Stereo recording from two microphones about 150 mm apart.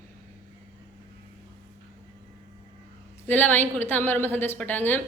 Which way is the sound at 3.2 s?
10° left (ahead or behind).